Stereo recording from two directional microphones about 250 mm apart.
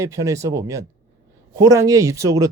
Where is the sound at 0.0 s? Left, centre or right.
Centre.